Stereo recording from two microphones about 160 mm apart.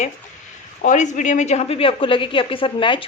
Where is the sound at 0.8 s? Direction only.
50° left (ahead or behind).